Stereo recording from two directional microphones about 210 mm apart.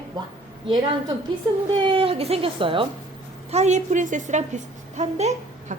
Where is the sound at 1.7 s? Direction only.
25° right (ahead or behind).